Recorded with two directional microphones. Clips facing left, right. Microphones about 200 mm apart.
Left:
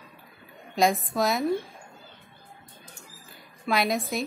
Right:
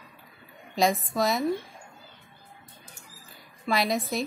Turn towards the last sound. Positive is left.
turn(degrees=0)  # may be behind; listen again after turning